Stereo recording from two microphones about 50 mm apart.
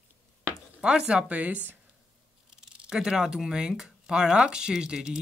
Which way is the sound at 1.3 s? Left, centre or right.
Right.